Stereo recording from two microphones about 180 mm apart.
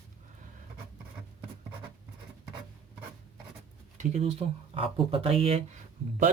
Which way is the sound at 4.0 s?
35° right (ahead or behind).